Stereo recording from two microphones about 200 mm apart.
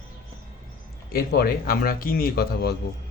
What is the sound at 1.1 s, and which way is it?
A man's voice, 50° left (ahead or behind).